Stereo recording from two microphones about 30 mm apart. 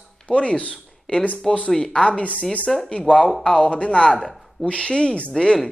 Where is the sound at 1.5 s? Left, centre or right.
Centre.